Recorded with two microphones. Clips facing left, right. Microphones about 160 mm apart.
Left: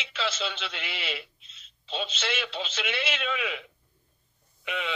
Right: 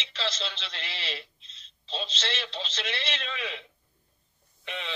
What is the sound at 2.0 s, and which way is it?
A man's voice, 35° right (ahead or behind).